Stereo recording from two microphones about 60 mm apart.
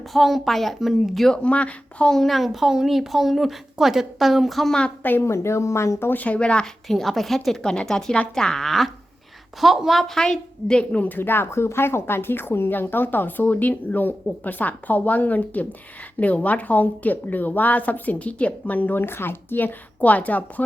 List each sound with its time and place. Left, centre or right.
0.1 s a woman's voice: centre
1.3 s a woman's voice: left
2.0 s a woman's voice: centre
5.2 s speech: left
6.1 s a woman's voice: left
6.8 s a woman's voice: centre
11.0 s a woman's voice: left